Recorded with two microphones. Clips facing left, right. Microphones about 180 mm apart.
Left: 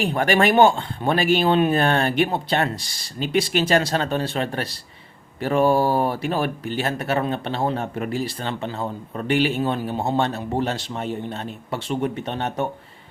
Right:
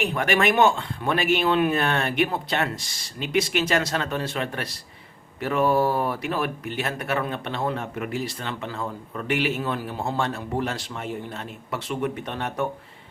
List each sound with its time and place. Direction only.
0.0 s speech: 35° left (ahead or behind)